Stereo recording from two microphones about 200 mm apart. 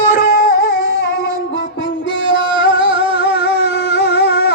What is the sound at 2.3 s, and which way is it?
Music, 25° right (ahead or behind).